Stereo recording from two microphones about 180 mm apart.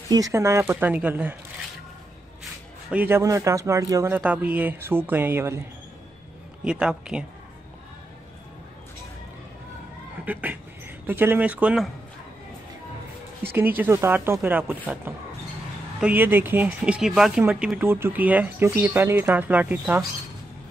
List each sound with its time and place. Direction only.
0.1 s speech: 15° right (ahead or behind)
2.9 s speech: 10° right (ahead or behind)
6.6 s speech: 5° right (ahead or behind)
10.2 s speech: 10° right (ahead or behind)
13.4 s speech: 10° right (ahead or behind)